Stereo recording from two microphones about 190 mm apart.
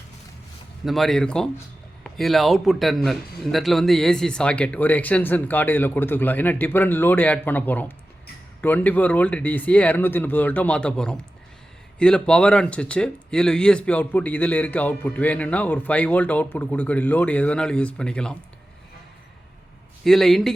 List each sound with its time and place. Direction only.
0.9 s speech: centre (ahead or behind)
20.1 s speech: centre (ahead or behind)